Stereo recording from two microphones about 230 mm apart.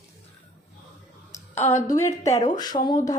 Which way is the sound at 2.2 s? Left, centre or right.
Centre.